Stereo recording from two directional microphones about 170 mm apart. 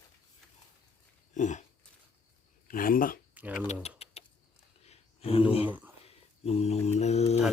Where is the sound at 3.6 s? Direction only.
40° left (ahead or behind).